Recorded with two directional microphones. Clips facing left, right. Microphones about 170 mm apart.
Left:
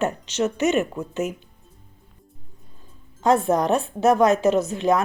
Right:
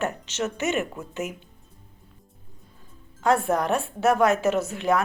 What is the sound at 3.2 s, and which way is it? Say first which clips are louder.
Speech: left 3 dB; 20° left (ahead or behind).